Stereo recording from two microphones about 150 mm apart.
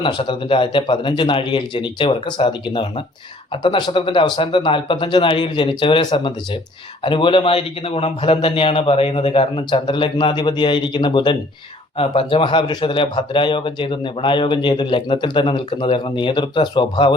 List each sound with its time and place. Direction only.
0.0 s speech: 35° left (ahead or behind)